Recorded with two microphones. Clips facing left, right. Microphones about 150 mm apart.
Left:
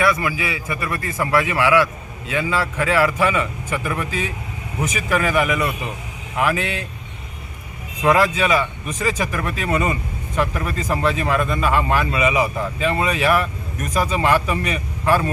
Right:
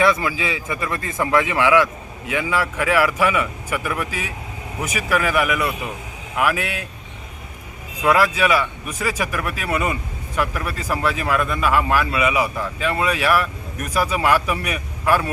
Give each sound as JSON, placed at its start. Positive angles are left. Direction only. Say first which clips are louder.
{"t": 0.0, "sound": "a man's voice", "louder": "right 1 dB", "side_deg": -20}
{"t": 8.0, "sound": "a man's voice", "louder": "left 1 dB", "side_deg": -5}